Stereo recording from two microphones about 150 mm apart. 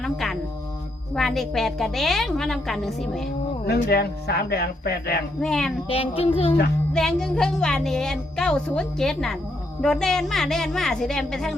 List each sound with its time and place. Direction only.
0.0 s music: centre (ahead or behind)
1.1 s a woman's voice: centre (ahead or behind)
3.7 s speech: 90° left
5.4 s a woman's voice: 5° left (ahead or behind)
5.9 s child singing: 40° left (ahead or behind)
6.9 s a woman's voice: 5° left (ahead or behind)